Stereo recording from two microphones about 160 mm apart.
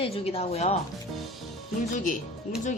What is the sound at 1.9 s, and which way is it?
Speech, 55° left (ahead or behind).